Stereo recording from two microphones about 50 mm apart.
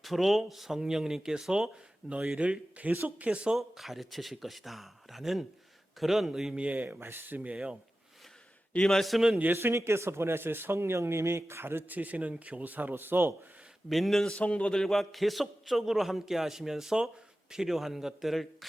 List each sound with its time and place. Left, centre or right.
0.0 s a man's voice: centre; by 3.2 s right
3.2 s speech: right
3.6 s a man's voice: centre
6.5 s a man's voice: right
7.0 s speech: right
7.3 s speech: right
8.9 s a man's voice: centre
9.4 s speech: right
9.7 s speech: right
11.9 s a man's voice: right
13.9 s a man's voice: centre
14.3 s a man's voice: left
14.7 s a man's voice: centre
14.9 s a man's voice: centre